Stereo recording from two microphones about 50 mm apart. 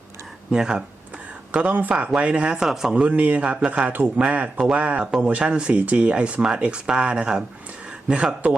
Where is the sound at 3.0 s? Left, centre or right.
Right.